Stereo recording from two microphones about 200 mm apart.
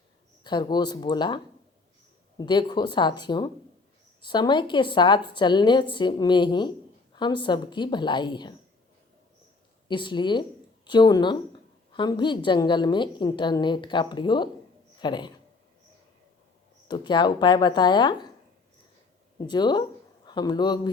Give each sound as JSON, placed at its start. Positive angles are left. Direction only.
{"t": 0.4, "sound": "a woman's voice", "side_deg": 20}
{"t": 2.4, "sound": "a woman's voice", "side_deg": 20}
{"t": 9.9, "sound": "a woman's voice", "side_deg": 25}
{"t": 16.9, "sound": "a woman's voice", "side_deg": 20}
{"t": 19.4, "sound": "a woman's voice", "side_deg": 20}